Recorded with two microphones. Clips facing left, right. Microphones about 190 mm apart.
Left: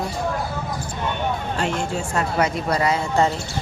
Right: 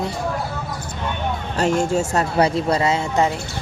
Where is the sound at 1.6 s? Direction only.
45° right (ahead or behind); by 3.2 s 25° right (ahead or behind).